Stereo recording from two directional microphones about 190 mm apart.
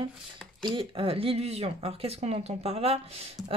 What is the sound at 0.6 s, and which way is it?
Speech, 25° right (ahead or behind).